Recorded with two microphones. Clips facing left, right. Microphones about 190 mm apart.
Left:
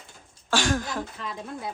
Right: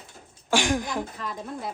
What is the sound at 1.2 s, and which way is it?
Speech, centre (ahead or behind).